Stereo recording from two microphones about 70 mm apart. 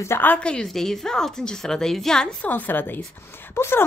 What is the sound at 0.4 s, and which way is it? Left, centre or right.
Speech, centre.